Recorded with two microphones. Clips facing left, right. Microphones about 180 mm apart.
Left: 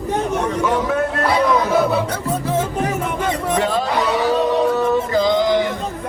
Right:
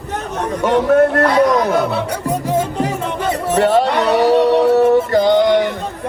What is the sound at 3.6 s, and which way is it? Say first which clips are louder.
Music: right 8 dB; 70° right (ahead or behind).